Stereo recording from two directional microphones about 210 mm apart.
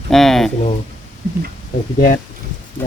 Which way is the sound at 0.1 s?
Centre (ahead or behind).